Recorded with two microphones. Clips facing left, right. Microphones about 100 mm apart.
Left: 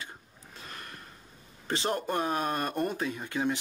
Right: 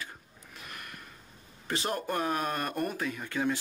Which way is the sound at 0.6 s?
30° left (ahead or behind).